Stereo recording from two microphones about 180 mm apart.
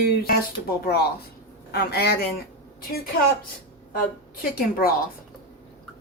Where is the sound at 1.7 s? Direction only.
60° left (ahead or behind).